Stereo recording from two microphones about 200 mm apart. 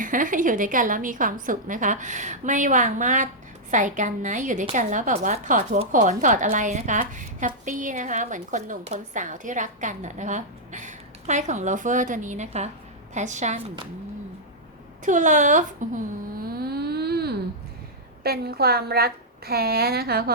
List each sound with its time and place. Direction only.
0.0 s a woman's voice: 40° right (ahead or behind)
15.0 s a woman's voice: 40° right (ahead or behind)
16.5 s a sound: 50° right (ahead or behind)
18.2 s a woman's voice: 50° right (ahead or behind)